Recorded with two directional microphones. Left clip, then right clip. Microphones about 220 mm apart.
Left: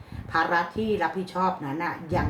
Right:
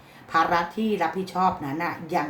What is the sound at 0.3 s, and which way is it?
A woman's voice, 30° right (ahead or behind).